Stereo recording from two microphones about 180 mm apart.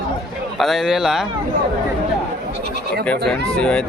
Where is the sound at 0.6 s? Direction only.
Centre (ahead or behind).